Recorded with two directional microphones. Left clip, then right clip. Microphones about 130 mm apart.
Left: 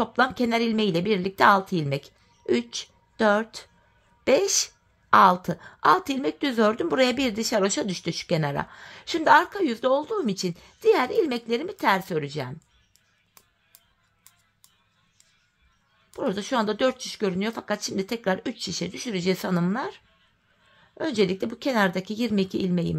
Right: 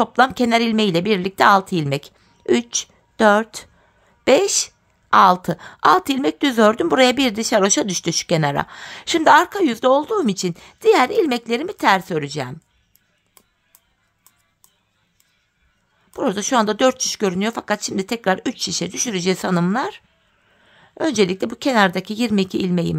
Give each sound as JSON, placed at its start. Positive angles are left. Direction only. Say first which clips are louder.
{"t": 0.0, "sound": "speech", "louder": "right 7 dB", "side_deg": -35}
{"t": 7.6, "sound": "speech", "louder": "right 7 dB", "side_deg": -50}
{"t": 8.3, "sound": "speech", "louder": "right 6 dB", "side_deg": -30}
{"t": 16.1, "sound": "speech", "louder": "right 7 dB", "side_deg": -40}
{"t": 18.4, "sound": "speech", "louder": "right 8 dB", "side_deg": -50}
{"t": 18.7, "sound": "speech", "louder": "right 7 dB", "side_deg": -35}
{"t": 18.9, "sound": "speech", "louder": "right 8 dB", "side_deg": -50}
{"t": 19.2, "sound": "speech", "louder": "right 5 dB", "side_deg": -35}
{"t": 20.7, "sound": "a sound", "louder": "right 8 dB", "side_deg": -35}
{"t": 21.1, "sound": "speech", "louder": "right 5 dB", "side_deg": -35}